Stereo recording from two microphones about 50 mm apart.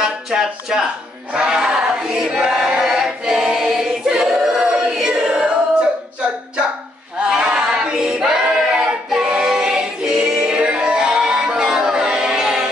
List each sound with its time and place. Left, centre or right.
0.0 s speech: centre
1.3 s choir: centre
7.2 s female singing: centre
8.7 s child singing: centre
10.3 s music: right